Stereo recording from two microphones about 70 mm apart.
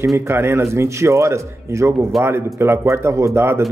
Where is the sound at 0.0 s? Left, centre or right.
Right.